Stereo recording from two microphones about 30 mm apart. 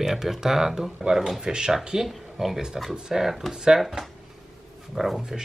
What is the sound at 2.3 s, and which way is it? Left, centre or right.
Speech, centre.